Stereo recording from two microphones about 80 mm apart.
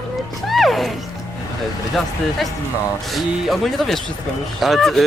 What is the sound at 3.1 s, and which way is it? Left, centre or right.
Speech, centre.